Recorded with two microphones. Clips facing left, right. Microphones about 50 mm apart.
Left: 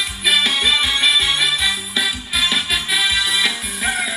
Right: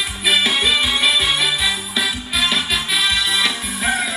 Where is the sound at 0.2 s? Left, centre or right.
Centre.